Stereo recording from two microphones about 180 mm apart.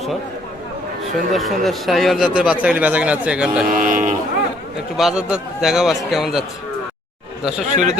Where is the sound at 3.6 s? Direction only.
50° right (ahead or behind).